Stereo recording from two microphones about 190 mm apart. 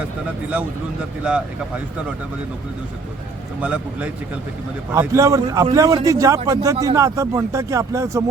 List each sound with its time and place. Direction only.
1.3 s speech: 5° right (ahead or behind)
3.6 s speech: 5° right (ahead or behind)